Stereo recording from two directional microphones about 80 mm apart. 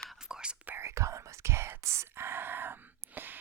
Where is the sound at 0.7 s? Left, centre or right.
Right.